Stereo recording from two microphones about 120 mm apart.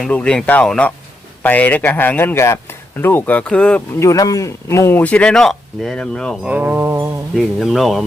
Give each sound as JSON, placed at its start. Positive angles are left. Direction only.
{"t": 0.0, "sound": "a man's voice", "side_deg": 10}
{"t": 4.0, "sound": "a man's voice", "side_deg": 30}
{"t": 6.4, "sound": "wind chime", "side_deg": -15}
{"t": 7.3, "sound": "speech", "side_deg": 0}